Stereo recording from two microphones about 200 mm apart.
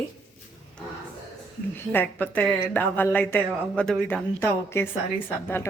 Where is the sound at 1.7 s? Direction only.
10° left (ahead or behind).